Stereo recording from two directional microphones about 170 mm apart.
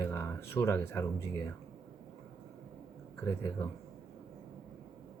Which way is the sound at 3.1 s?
15° left (ahead or behind).